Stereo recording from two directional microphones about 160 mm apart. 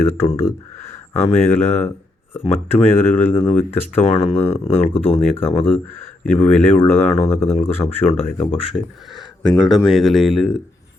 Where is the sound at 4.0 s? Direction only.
40° left (ahead or behind).